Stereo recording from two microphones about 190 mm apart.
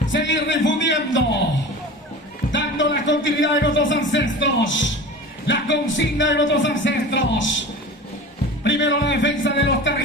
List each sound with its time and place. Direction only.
0.1 s speech: 70° left (ahead or behind)
2.5 s speech: 75° left (ahead or behind)
8.6 s speech: 70° left (ahead or behind)